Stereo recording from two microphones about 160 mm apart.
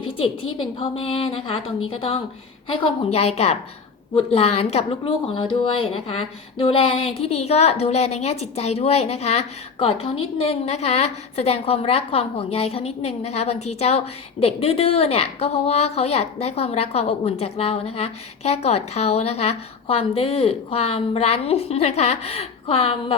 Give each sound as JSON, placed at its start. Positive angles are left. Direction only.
{"t": 0.0, "sound": "a woman's voice", "side_deg": 35}